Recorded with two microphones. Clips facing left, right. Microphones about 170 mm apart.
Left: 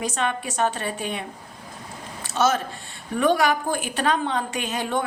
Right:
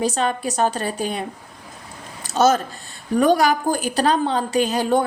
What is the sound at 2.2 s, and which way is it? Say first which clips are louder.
A woman's voice: right 5 dB; 40° right (ahead or behind).